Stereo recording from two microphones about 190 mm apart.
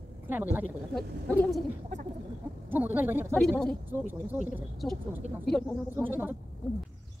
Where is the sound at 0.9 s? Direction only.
5° left (ahead or behind).